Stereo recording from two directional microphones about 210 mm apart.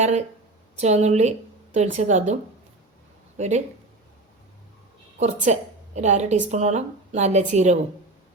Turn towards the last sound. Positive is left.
turn(degrees=-35)  # may be behind; listen again after turning